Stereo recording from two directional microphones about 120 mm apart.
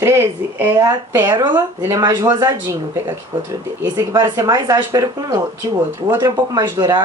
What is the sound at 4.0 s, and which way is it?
A woman's voice, 35° right (ahead or behind).